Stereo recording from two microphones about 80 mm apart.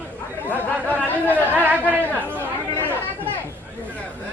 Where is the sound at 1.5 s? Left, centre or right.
Right.